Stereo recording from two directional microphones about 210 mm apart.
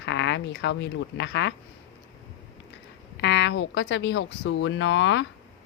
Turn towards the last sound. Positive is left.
turn(degrees=60)  # may be behind; listen again after turning